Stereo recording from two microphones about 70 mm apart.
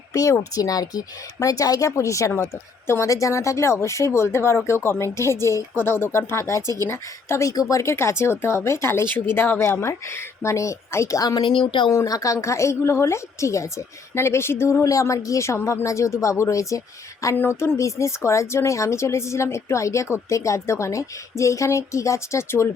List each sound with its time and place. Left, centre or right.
0.1 s speech: left
2.3 s speech: left
3.1 s speech: left
11.2 s speech: left
12.0 s speech: left
14.8 s speech: left
17.5 s speech: left